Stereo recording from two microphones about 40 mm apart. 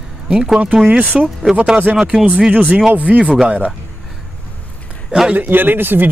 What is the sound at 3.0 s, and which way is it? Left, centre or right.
Speech, right.